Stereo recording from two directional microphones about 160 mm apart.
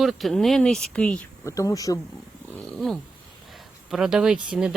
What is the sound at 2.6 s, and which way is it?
Speech, centre (ahead or behind).